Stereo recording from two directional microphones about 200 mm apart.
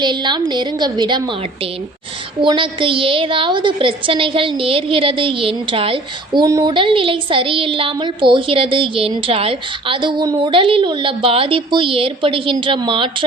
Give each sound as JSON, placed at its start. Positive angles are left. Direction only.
{"t": 0.0, "sound": "a woman's voice", "side_deg": -20}
{"t": 2.4, "sound": "a woman's voice", "side_deg": -25}